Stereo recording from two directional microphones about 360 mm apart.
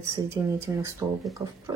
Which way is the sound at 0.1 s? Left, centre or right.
Centre.